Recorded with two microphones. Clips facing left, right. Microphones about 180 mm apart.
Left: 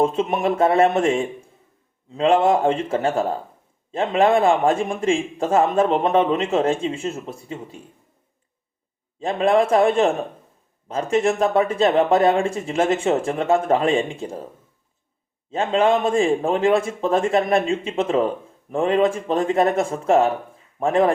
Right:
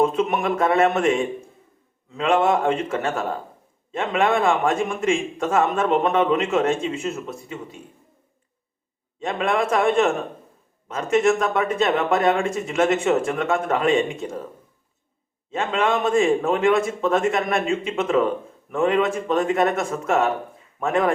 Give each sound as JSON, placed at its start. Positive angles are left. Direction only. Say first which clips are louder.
{"t": 0.0, "sound": "a man's voice", "louder": "left 1 dB", "side_deg": 30}
{"t": 9.2, "sound": "a man's voice", "louder": "left 5 dB", "side_deg": 30}
{"t": 15.5, "sound": "a man's voice", "louder": "left 4 dB", "side_deg": 30}